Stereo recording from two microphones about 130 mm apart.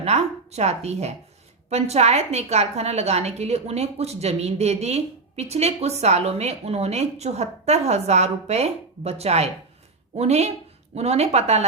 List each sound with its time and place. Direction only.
0.0 s a woman's voice: 55° right (ahead or behind)